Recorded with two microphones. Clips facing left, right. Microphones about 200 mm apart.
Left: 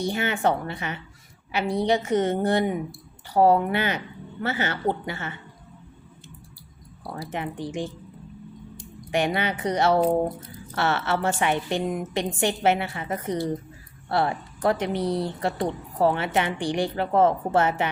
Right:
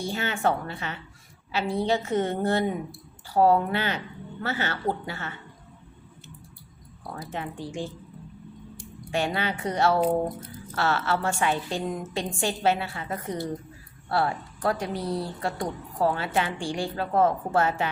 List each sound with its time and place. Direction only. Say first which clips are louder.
0.0 s a woman's voice: left 3 dB; 15° left (ahead or behind)
7.0 s speech: left 3 dB; 35° left (ahead or behind)
7.3 s a woman's voice: left 3 dB; 15° left (ahead or behind)
9.1 s a woman's voice: left 3 dB; 15° left (ahead or behind)